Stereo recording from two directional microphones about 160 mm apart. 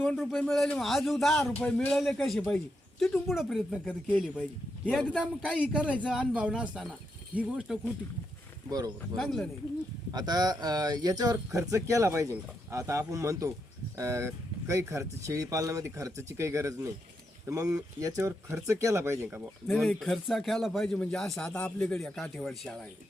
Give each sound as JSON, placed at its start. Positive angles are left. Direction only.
{"t": 0.2, "sound": "speech", "side_deg": 5}
{"t": 9.1, "sound": "speech", "side_deg": 0}
{"t": 10.1, "sound": "speech", "side_deg": -25}
{"t": 19.6, "sound": "speech", "side_deg": 0}